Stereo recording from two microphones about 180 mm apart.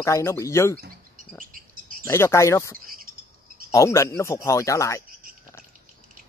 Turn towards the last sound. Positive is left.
turn(degrees=15)  # may be behind; listen again after turning